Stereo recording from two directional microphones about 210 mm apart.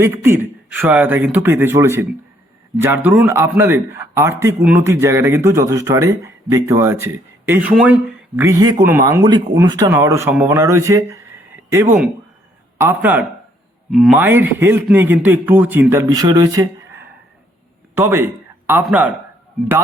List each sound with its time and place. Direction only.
0.0 s a man's voice: 10° right (ahead or behind)